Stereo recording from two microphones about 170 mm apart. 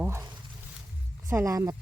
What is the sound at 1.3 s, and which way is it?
Speech, 15° right (ahead or behind).